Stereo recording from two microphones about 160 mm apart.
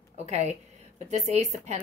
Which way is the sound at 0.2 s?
45° right (ahead or behind).